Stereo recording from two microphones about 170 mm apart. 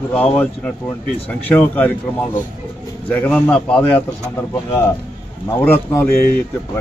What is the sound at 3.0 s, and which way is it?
A man's voice, 10° left (ahead or behind).